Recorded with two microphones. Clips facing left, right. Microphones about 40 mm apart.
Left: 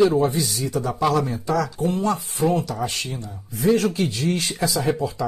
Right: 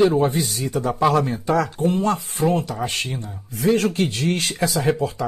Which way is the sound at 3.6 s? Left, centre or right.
Right.